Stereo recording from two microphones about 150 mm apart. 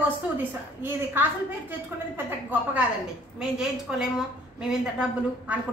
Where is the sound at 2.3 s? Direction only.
10° right (ahead or behind).